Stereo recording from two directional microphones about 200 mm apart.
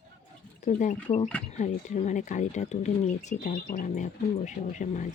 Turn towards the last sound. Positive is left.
turn(degrees=40)  # may be behind; listen again after turning